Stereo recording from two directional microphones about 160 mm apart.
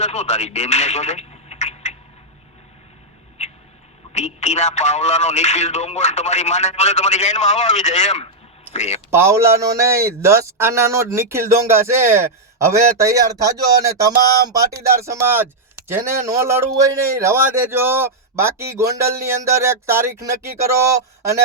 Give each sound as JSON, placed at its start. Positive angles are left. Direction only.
{"t": 0.0, "sound": "speech", "side_deg": 45}
{"t": 4.1, "sound": "speech", "side_deg": 45}
{"t": 9.0, "sound": "a man's voice", "side_deg": -15}